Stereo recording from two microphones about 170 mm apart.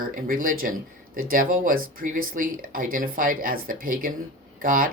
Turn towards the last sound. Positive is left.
turn(degrees=-55)  # may be behind; listen again after turning